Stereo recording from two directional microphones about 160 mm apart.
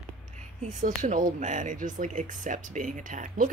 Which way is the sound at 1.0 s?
55° right (ahead or behind).